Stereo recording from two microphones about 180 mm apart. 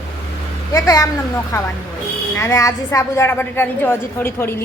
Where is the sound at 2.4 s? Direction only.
20° left (ahead or behind).